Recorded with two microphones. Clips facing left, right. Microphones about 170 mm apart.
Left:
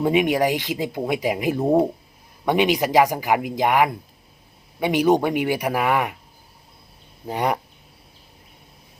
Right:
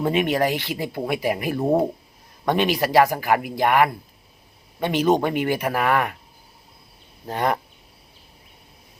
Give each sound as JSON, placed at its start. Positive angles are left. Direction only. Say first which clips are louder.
{"t": 0.0, "sound": "speech", "louder": "left 2 dB", "side_deg": 15}
{"t": 7.3, "sound": "speech", "louder": "even", "side_deg": 15}